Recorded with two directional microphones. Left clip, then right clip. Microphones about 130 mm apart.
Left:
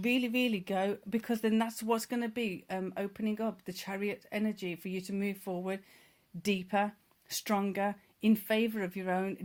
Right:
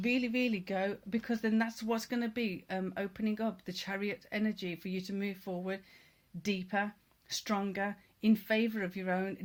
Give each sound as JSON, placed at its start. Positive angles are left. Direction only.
{"t": 0.0, "sound": "speech", "side_deg": 55}
{"t": 6.4, "sound": "speech", "side_deg": 65}